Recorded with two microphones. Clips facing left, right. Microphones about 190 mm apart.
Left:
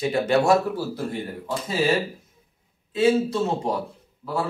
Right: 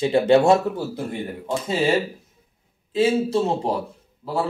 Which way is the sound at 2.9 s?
30° right (ahead or behind).